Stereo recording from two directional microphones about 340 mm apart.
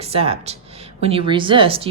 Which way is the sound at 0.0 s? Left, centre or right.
Centre.